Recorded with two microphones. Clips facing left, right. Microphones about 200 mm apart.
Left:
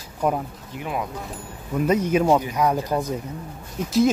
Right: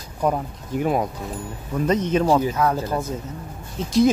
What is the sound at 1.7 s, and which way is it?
Speech, 10° left (ahead or behind).